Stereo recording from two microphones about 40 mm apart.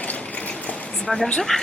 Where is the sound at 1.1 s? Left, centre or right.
Centre.